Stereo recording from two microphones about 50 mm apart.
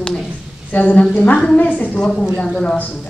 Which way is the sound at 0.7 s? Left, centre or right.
Left.